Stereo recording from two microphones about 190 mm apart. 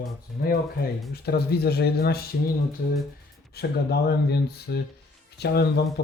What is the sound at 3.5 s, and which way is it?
Speech, 55° left (ahead or behind).